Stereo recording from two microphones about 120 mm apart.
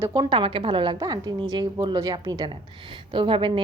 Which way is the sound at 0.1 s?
45° right (ahead or behind).